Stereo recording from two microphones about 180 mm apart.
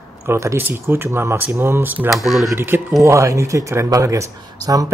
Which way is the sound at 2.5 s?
10° right (ahead or behind).